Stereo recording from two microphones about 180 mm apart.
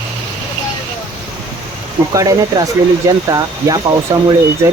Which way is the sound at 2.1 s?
20° right (ahead or behind).